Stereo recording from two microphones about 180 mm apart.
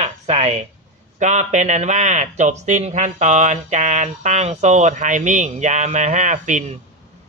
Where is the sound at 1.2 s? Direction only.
40° right (ahead or behind).